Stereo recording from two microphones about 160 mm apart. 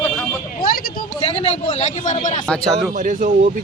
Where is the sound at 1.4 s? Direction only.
45° left (ahead or behind).